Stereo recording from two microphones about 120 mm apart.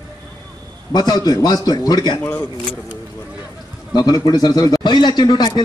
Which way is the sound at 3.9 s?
35° left (ahead or behind).